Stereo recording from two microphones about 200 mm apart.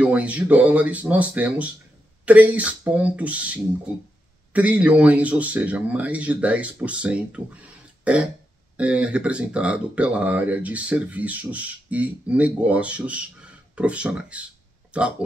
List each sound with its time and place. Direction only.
0.0 s speech: 5° right (ahead or behind)
8.0 s throat clearing: 5° right (ahead or behind)
8.7 s speech: 5° right (ahead or behind)